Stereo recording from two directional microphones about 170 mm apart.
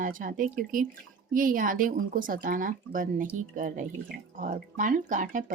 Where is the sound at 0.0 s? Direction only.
55° right (ahead or behind).